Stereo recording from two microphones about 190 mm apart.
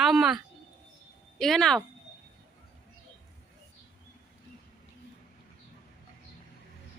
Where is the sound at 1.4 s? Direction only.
5° left (ahead or behind).